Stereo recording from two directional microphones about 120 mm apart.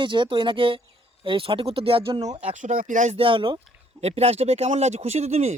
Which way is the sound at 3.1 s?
45° right (ahead or behind).